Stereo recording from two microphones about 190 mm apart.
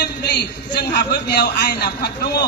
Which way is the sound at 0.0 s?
60° left (ahead or behind).